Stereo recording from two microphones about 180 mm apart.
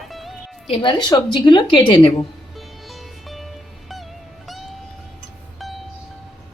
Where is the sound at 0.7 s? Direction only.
30° left (ahead or behind).